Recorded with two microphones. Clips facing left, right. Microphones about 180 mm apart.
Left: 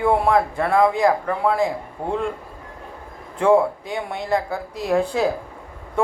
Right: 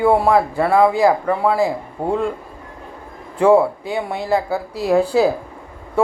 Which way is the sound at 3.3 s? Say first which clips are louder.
Right 3 dB; 5° right (ahead or behind).